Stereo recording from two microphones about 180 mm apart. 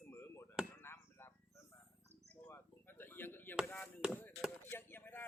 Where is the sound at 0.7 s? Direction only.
15° left (ahead or behind).